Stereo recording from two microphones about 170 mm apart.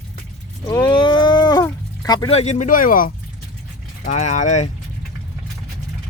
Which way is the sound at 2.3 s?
40° left (ahead or behind).